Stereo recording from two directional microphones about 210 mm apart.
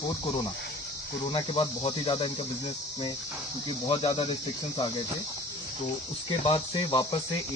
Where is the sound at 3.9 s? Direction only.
25° left (ahead or behind).